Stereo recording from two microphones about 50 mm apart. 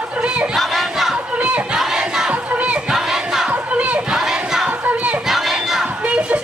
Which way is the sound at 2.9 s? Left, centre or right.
Centre.